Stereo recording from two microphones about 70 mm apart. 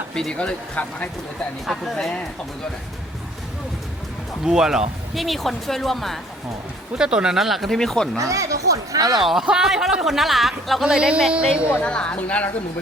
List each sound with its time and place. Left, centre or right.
0.1 s speech: centre
1.6 s speech: centre
4.4 s speech: centre
6.9 s speech: centre
8.2 s speech: right
9.2 s speech: centre
11.8 s speech: centre